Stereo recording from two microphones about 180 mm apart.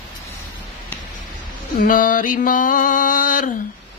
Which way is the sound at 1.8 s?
50° left (ahead or behind).